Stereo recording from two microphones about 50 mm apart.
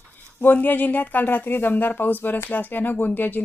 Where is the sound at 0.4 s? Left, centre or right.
Left.